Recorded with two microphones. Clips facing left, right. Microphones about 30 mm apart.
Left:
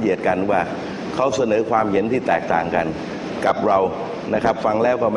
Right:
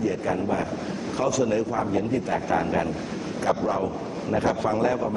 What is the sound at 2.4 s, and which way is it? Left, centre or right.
Speech, left.